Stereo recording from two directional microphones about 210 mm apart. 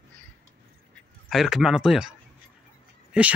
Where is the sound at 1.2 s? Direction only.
Centre (ahead or behind).